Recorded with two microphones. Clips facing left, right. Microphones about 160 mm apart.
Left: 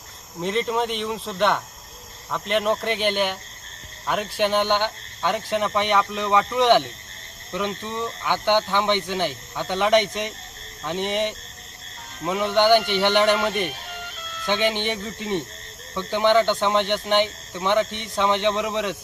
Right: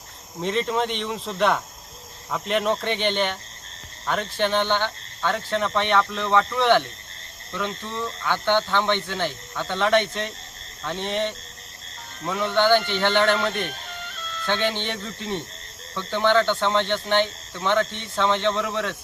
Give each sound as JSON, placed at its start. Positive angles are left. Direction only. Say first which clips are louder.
{"t": 0.3, "sound": "speech", "louder": "even", "side_deg": 0}